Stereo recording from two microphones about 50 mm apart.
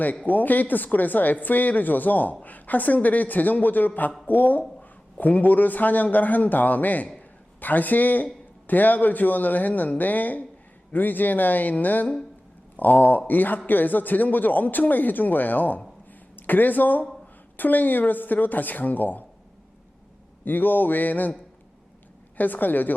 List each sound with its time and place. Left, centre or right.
0.0 s a man's voice: left
7.2 s a sound: left
8.6 s a man's voice: left
20.4 s a man's voice: left
22.4 s a man's voice: left